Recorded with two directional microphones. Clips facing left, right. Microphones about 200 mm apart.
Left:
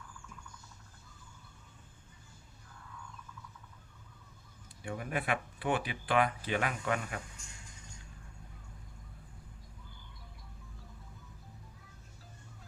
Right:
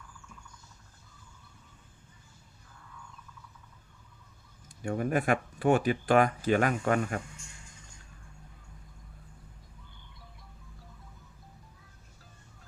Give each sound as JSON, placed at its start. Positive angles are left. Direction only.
{"t": 4.8, "sound": "speech", "side_deg": -45}